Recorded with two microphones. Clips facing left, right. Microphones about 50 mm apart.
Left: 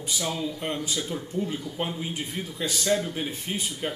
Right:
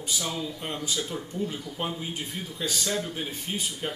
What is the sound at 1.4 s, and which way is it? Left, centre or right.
A man's voice, centre.